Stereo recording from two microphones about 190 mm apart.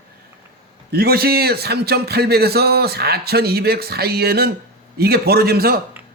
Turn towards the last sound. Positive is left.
turn(degrees=-55)  # may be behind; listen again after turning